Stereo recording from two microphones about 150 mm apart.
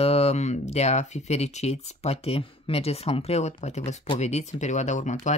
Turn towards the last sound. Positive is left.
turn(degrees=50)  # may be behind; listen again after turning